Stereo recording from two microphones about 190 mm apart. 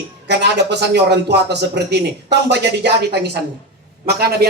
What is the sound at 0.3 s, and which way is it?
A man's voice, 65° right (ahead or behind).